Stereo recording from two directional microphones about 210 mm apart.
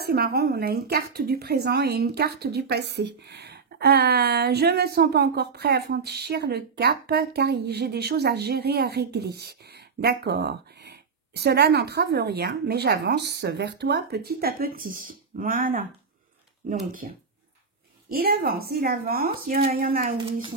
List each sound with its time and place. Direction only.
0.0 s a woman's voice: 50° right (ahead or behind)
17.0 s a woman's voice: 40° right (ahead or behind)